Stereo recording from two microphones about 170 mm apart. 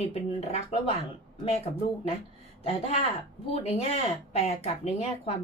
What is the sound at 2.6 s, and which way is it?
Speech, 35° left (ahead or behind).